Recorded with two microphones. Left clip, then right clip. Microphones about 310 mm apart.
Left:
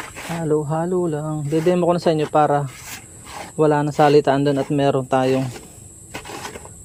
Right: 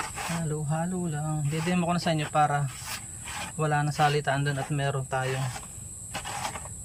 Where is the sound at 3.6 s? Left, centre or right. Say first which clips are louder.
Left 10 dB; centre.